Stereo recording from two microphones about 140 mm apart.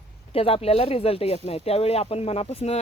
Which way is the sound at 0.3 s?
45° left (ahead or behind).